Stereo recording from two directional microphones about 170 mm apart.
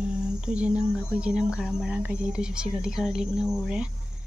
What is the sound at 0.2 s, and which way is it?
Speech, 5° right (ahead or behind).